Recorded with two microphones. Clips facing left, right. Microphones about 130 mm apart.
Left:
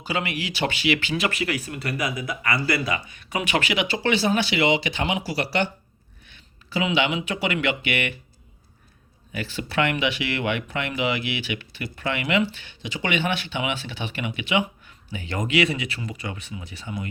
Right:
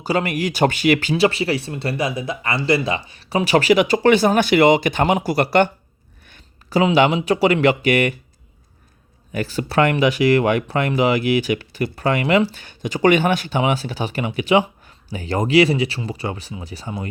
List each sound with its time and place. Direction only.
0.0 s speech: 40° right (ahead or behind)
9.3 s speech: 40° right (ahead or behind)